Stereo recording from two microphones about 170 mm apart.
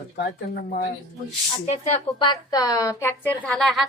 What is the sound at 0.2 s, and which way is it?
Speech, 70° left (ahead or behind).